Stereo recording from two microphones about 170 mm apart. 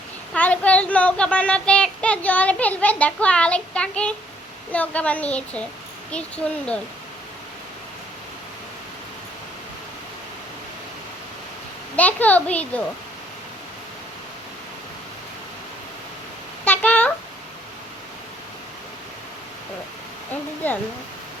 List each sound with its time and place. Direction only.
0.3 s speech: 10° left (ahead or behind)
11.9 s speech: 10° left (ahead or behind)
16.6 s a sound: 10° left (ahead or behind)
20.6 s speech: 10° left (ahead or behind)